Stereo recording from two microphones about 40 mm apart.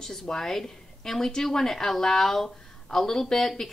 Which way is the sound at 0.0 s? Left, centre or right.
Centre.